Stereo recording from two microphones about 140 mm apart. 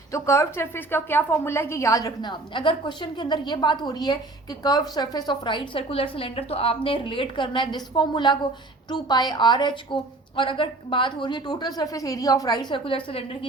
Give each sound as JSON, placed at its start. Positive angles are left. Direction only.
{"t": 0.1, "sound": "a woman's voice", "side_deg": 20}